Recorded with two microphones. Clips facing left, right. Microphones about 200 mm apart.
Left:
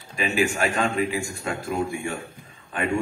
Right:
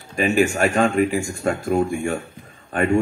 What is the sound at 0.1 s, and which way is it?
A man's voice, 50° right (ahead or behind).